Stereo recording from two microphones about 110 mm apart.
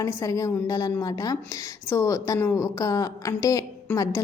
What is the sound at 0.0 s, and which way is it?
A woman's voice, 30° left (ahead or behind).